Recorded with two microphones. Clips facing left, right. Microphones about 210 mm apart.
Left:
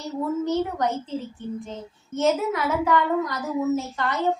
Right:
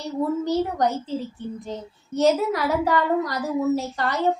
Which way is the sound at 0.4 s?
35° right (ahead or behind).